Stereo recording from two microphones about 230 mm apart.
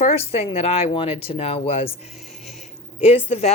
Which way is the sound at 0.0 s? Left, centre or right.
Left.